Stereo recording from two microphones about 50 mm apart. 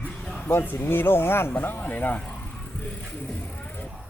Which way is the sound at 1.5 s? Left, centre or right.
Left.